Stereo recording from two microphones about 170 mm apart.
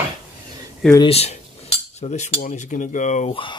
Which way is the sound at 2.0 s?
45° left (ahead or behind).